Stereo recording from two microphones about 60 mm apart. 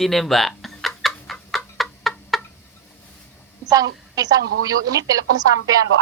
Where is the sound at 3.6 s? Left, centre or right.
Right.